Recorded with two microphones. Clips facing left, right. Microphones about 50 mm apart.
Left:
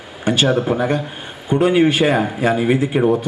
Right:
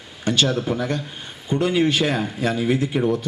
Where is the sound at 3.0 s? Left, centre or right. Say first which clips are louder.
Left 5 dB; left.